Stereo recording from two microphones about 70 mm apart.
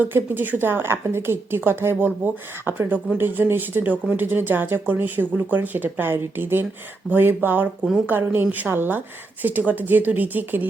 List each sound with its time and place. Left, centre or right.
0.0 s a woman's voice: right